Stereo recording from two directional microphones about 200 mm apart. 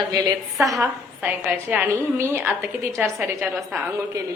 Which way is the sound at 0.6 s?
Centre (ahead or behind).